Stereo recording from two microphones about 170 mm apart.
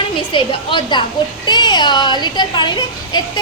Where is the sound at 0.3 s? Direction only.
30° left (ahead or behind).